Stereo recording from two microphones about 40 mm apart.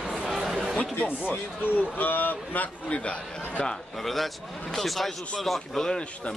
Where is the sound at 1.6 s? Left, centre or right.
Left.